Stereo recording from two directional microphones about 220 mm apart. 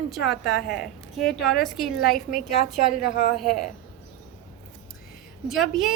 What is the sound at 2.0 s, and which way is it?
Speech, 40° left (ahead or behind).